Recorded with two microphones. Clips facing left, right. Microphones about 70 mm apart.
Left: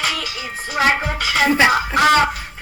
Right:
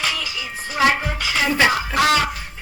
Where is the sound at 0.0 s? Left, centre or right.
Left.